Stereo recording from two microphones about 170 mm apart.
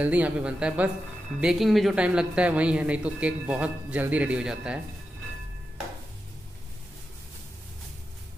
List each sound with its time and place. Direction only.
0.0 s speech: 10° right (ahead or behind)